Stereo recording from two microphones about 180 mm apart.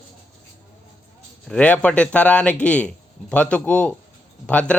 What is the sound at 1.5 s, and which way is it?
A man's voice, 5° left (ahead or behind).